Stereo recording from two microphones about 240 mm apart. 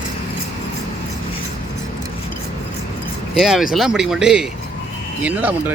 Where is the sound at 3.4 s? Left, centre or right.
Centre.